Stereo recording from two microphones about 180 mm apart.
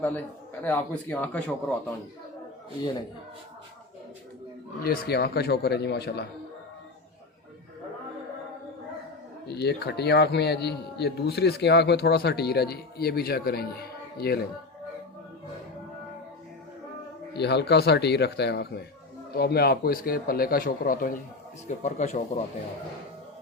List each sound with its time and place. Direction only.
0.0 s speech: 10° left (ahead or behind)
4.8 s speech: 60° left (ahead or behind)
9.5 s speech: 65° left (ahead or behind)
17.3 s speech: 70° left (ahead or behind); by 21.2 s 50° left (ahead or behind)
21.8 s speech: 40° left (ahead or behind)